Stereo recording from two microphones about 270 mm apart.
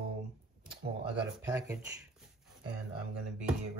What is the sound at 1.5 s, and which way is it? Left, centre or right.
Speech, centre.